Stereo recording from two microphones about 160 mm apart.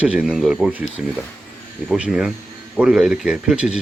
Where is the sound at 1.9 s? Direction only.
5° right (ahead or behind).